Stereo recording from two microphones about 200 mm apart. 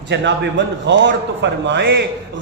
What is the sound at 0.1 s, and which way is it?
A man's voice, 60° right (ahead or behind).